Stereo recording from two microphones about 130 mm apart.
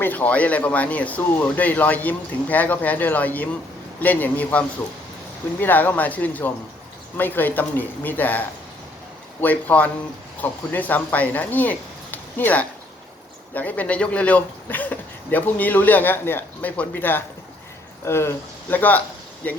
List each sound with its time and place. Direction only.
0.0 s speech: 15° left (ahead or behind)